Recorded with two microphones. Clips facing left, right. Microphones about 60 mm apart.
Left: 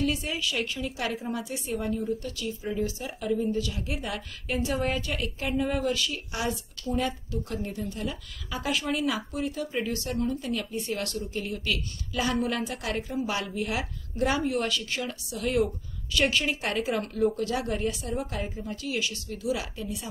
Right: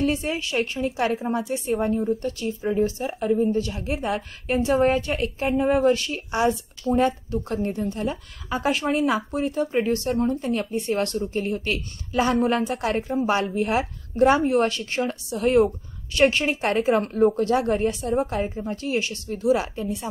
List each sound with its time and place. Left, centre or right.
0.0 s speech: right